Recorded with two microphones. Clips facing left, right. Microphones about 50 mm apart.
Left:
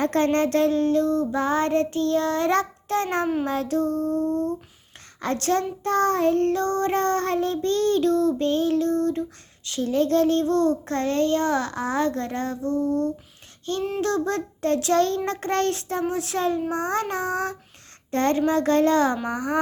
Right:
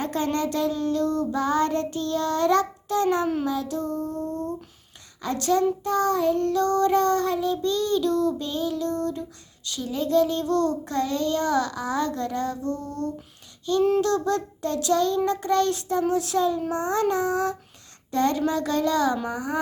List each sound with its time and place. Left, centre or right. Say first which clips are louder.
0.0 s a sound: left 5 dB; left
0.3 s child singing: left 4 dB; left
3.8 s a sound: left 4 dB; right
4.1 s child singing: left 6 dB; left
6.5 s child singing: right 2 dB; left
10.4 s child singing: left 2 dB; left
10.8 s child singing: left 3 dB; left
14.0 s child singing: right 1 dB; left
14.9 s child singing: left 1 dB; left